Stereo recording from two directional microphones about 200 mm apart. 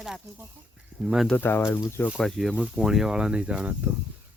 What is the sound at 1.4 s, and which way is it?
Speech, 10° left (ahead or behind).